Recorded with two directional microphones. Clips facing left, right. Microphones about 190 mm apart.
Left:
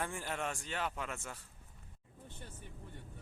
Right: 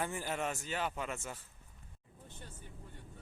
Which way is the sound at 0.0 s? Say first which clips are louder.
Right 2 dB; 5° right (ahead or behind).